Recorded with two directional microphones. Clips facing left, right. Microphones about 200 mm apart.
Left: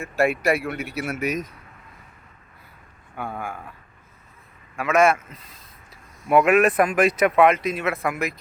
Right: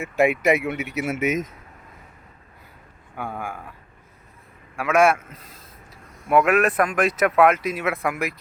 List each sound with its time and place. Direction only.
0.0 s speech: 20° right (ahead or behind)
3.2 s speech: 10° right (ahead or behind)
4.8 s speech: 10° right (ahead or behind)
6.2 s speech: centre (ahead or behind)